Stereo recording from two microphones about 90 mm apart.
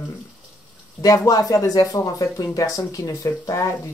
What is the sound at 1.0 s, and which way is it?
Speech, 40° left (ahead or behind).